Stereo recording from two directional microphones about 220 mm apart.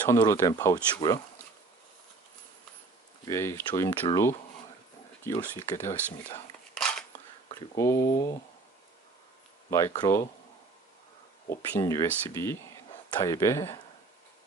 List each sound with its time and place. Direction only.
0.1 s speech: 15° left (ahead or behind)
3.3 s speech: 10° left (ahead or behind)
6.7 s scissors: 5° left (ahead or behind)
7.4 s speech: 15° left (ahead or behind)
9.7 s speech: 15° left (ahead or behind)
11.4 s speech: 10° left (ahead or behind)